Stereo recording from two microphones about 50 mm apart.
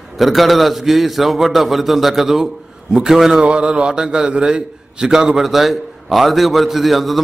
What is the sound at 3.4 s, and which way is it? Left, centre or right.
A man's voice, right.